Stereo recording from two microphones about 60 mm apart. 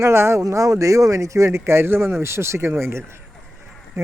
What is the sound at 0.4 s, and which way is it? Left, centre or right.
Speech, right.